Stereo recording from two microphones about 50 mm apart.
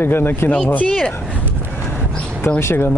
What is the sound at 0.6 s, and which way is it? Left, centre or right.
Speech, left.